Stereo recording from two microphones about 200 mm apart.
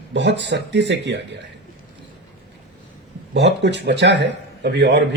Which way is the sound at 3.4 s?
60° right (ahead or behind).